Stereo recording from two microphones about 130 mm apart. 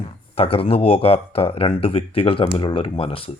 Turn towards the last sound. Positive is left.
turn(degrees=45)  # may be behind; listen again after turning